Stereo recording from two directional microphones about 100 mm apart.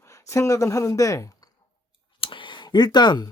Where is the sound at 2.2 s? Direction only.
55° left (ahead or behind).